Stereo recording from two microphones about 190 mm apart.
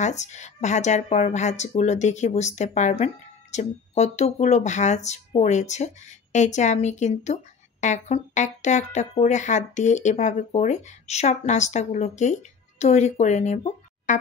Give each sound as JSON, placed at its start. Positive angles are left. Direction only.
{"t": 0.0, "sound": "speech", "side_deg": 35}